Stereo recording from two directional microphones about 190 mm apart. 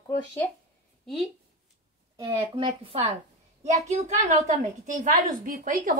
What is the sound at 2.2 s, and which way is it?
A woman's voice, 30° right (ahead or behind).